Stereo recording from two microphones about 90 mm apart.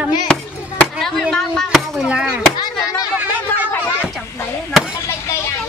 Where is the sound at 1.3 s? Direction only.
5° left (ahead or behind).